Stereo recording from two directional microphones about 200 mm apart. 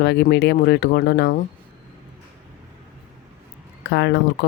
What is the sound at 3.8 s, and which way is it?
Speech, 55° left (ahead or behind).